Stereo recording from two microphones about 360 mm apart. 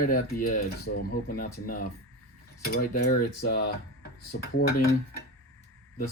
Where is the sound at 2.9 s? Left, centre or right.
Left.